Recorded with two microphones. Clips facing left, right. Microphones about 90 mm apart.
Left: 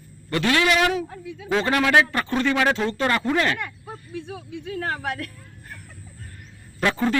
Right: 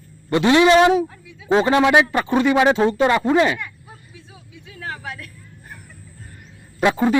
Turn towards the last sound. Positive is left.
turn(degrees=-15)  # may be behind; listen again after turning